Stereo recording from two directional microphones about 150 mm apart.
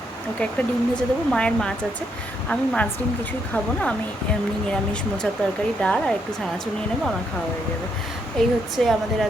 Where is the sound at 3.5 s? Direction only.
10° left (ahead or behind).